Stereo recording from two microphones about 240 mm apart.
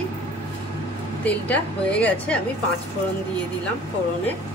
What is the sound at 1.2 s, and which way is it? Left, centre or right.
A woman's voice, centre.